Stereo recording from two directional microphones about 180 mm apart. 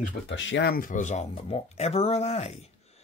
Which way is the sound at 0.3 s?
85° left.